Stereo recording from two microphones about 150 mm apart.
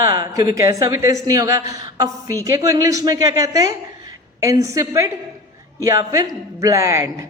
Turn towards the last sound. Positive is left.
turn(degrees=-20)  # may be behind; listen again after turning